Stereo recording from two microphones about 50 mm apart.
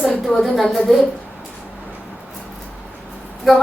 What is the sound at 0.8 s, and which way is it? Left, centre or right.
Speech, centre.